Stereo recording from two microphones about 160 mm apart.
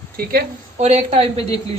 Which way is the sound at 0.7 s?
45° right (ahead or behind).